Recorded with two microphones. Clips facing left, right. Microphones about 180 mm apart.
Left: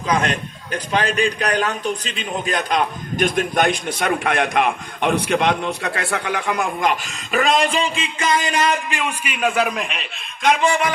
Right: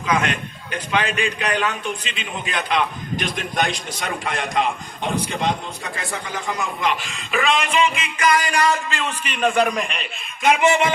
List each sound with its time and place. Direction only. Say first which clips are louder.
0.1 s a man's voice: left 1 dB; 35° left (ahead or behind); by 10.6 s centre (ahead or behind)
10.6 s speech: right 1 dB; 20° right (ahead or behind)